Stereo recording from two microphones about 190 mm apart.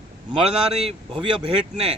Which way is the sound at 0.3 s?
5° right (ahead or behind).